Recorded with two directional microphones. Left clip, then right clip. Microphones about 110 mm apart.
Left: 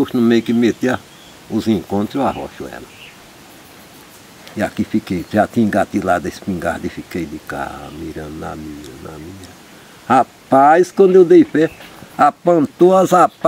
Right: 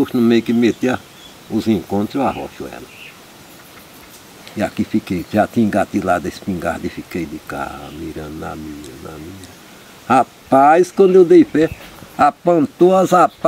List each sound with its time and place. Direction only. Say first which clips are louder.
0.0 s speech: even; 10° left (ahead or behind)
4.6 s speech: even; 10° left (ahead or behind)
10.0 s speech: left 1 dB; 10° left (ahead or behind)